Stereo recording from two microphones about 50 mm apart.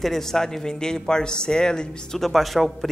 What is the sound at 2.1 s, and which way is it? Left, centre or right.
Speech, centre.